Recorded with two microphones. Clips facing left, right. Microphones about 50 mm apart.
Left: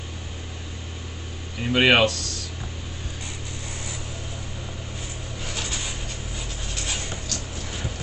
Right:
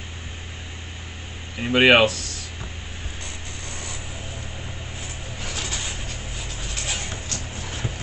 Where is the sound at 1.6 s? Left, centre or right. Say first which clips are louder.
Right 3 dB; centre.